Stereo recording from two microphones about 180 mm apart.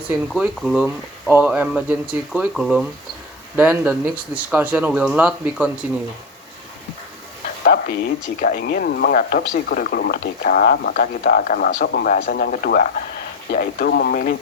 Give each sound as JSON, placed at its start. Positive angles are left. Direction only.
{"t": 0.3, "sound": "speech", "side_deg": 0}
{"t": 7.6, "sound": "a sound", "side_deg": 50}
{"t": 8.4, "sound": "speech", "side_deg": 50}